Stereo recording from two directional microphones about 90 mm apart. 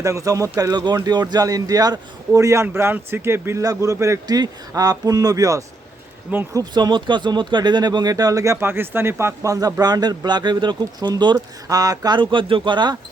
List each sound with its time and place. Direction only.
0.0 s a man's voice: 35° right (ahead or behind)
0.6 s a man's voice: 50° right (ahead or behind); by 3.6 s 25° right (ahead or behind)
3.6 s a man's voice: 40° right (ahead or behind)
4.3 s a man's voice: 45° right (ahead or behind)